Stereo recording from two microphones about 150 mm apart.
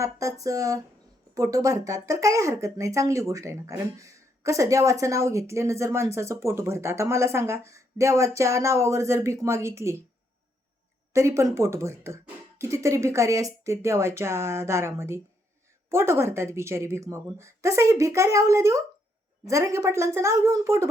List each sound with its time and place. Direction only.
0.0 s speech: 20° right (ahead or behind)
11.1 s speech: 20° right (ahead or behind)